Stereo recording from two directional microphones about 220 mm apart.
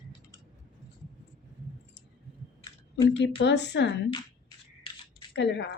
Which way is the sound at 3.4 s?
50° left (ahead or behind).